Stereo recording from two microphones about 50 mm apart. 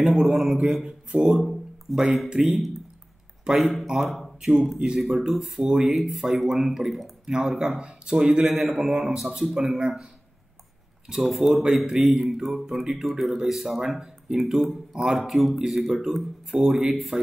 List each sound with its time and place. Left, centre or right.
0.0 s a man's voice: centre
1.5 s a sound: centre
2.2 s speech: centre
3.8 s speech: centre
5.0 s speech: centre
9.8 s speech: centre
11.1 s speech: centre